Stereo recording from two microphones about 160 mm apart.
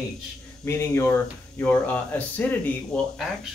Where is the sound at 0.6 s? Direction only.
15° left (ahead or behind).